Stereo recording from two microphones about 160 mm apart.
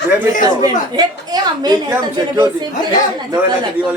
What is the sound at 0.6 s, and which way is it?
A woman's voice, 25° right (ahead or behind).